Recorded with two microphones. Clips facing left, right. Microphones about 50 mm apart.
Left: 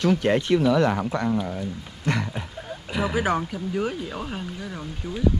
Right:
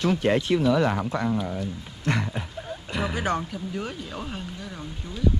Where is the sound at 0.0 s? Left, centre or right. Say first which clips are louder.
Left 2 dB; left.